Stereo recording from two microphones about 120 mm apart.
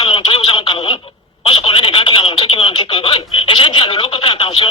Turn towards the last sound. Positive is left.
turn(degrees=45)  # may be behind; listen again after turning